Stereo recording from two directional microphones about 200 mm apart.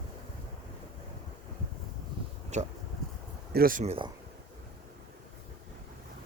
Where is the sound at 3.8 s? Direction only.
30° right (ahead or behind).